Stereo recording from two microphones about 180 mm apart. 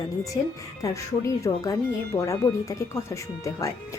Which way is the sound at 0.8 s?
20° left (ahead or behind).